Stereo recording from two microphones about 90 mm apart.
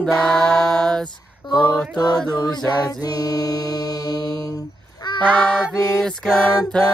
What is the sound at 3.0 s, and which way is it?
Mantra, 45° left (ahead or behind).